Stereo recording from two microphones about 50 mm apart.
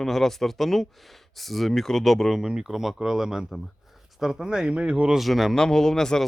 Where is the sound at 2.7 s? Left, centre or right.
Centre.